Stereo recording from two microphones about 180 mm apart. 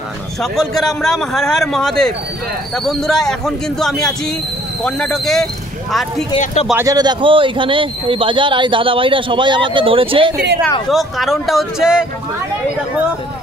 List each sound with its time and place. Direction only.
0.4 s speech: centre (ahead or behind)
6.3 s speech: 40° left (ahead or behind)
6.7 s speech: 15° right (ahead or behind)
10.9 s speech: centre (ahead or behind)